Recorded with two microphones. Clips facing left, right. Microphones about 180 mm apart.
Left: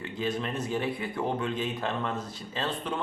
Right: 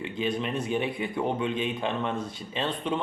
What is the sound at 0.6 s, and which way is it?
Speech, 20° right (ahead or behind).